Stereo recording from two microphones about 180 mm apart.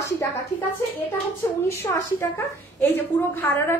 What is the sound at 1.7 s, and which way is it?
A woman's voice, 15° left (ahead or behind).